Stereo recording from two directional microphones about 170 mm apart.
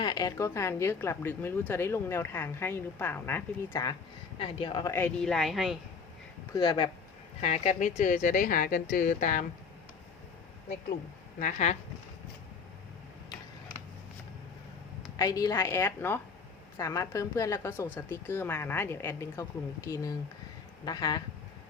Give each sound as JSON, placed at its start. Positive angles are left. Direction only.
{"t": 0.0, "sound": "a woman's voice", "side_deg": 20}
{"t": 4.4, "sound": "speech", "side_deg": 30}
{"t": 4.9, "sound": "a woman's voice", "side_deg": 15}
{"t": 5.2, "sound": "speech", "side_deg": 0}
{"t": 6.5, "sound": "speech", "side_deg": 25}
{"t": 7.4, "sound": "a woman's voice", "side_deg": 40}
{"t": 11.3, "sound": "a woman's voice", "side_deg": 45}
{"t": 15.1, "sound": "a woman's voice", "side_deg": 20}